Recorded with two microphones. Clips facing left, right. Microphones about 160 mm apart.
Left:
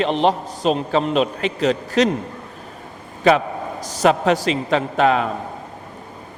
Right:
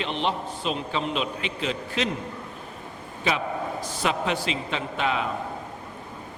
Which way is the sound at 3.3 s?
45° left (ahead or behind).